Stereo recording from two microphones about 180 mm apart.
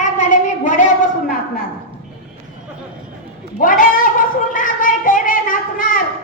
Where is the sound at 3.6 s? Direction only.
50° left (ahead or behind).